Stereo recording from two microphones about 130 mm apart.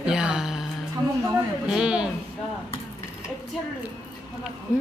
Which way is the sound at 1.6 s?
5° right (ahead or behind).